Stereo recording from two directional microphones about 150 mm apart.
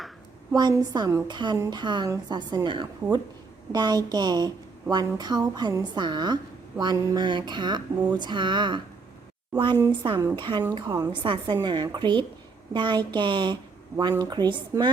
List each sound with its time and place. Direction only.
0.5 s a woman's voice: 25° right (ahead or behind)
10.3 s a woman's voice: 30° right (ahead or behind)